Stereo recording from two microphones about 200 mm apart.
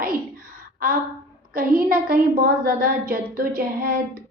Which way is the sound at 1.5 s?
45° right (ahead or behind).